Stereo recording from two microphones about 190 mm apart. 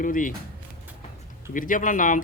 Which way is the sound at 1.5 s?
45° left (ahead or behind).